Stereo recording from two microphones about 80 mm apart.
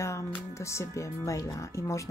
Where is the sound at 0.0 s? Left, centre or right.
Left.